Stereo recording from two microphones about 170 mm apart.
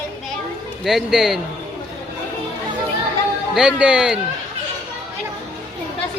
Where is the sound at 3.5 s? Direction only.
5° right (ahead or behind).